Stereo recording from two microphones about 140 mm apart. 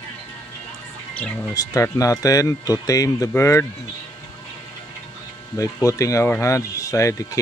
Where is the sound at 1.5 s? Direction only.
25° left (ahead or behind).